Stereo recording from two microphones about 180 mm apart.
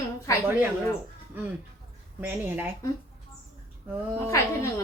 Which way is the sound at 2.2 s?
10° right (ahead or behind).